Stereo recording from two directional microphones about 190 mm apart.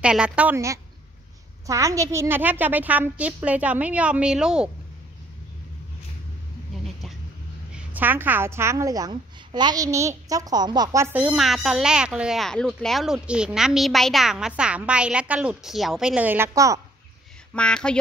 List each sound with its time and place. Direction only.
0.0 s a woman's voice: 5° right (ahead or behind)
7.7 s a woman's voice: 10° right (ahead or behind)
17.6 s a woman's voice: 5° left (ahead or behind)